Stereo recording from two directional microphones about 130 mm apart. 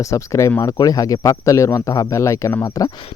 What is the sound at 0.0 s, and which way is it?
Speech, 25° left (ahead or behind).